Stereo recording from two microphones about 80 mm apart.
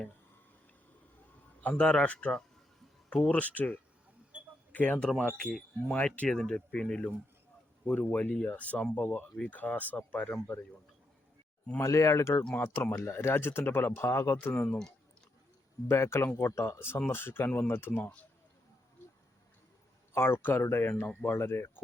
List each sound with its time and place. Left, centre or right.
1.6 s a man's voice: centre
5.4 s speech: centre
11.8 s speech: left
14.4 s speech: left
15.9 s speech: left
20.1 s speech: left
21.3 s speech: left